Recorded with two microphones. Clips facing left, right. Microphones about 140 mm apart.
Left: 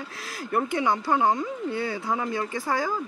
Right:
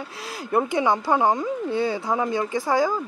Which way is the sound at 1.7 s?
30° right (ahead or behind).